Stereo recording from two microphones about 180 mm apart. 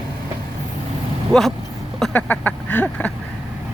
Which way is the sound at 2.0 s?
10° left (ahead or behind).